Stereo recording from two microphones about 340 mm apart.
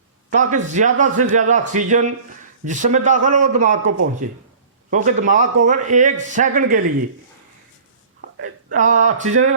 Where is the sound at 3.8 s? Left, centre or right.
Right.